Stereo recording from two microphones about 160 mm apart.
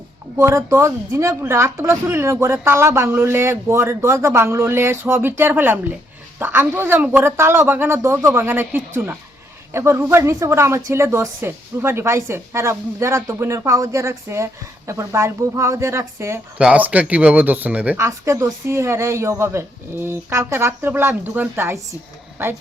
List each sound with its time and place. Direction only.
0.3 s a woman's voice: 15° right (ahead or behind)